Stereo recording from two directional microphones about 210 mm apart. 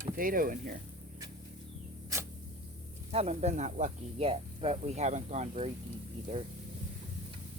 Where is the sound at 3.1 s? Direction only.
30° right (ahead or behind).